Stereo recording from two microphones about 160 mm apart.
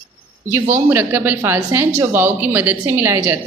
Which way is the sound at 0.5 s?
15° right (ahead or behind).